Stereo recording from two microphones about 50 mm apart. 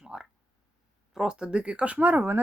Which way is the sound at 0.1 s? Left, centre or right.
Centre.